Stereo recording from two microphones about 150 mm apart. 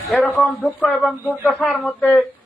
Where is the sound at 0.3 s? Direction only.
10° left (ahead or behind).